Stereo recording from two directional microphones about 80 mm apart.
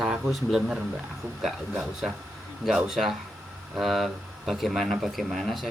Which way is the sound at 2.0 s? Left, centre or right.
Centre.